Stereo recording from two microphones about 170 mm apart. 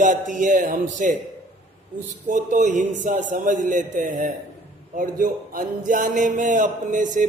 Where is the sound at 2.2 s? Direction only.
50° right (ahead or behind).